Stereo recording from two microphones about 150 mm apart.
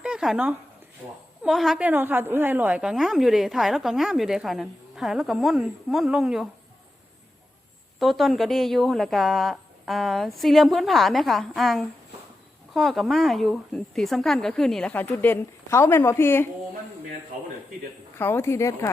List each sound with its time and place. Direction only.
0.0 s a sound: 5° right (ahead or behind)
1.5 s a woman's voice: centre (ahead or behind)
7.9 s a woman's voice: centre (ahead or behind); by 16.5 s 15° left (ahead or behind)
18.2 s speech: 15° left (ahead or behind)